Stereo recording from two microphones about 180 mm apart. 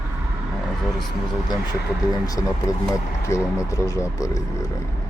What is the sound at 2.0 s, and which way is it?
Speech, 20° left (ahead or behind).